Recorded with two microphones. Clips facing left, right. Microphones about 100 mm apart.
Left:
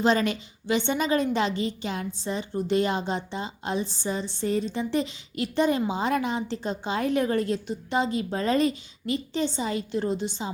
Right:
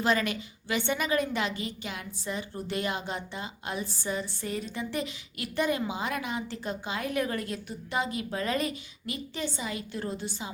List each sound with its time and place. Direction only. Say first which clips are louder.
0.0 s a woman's voice: left 4 dB; 30° left (ahead or behind)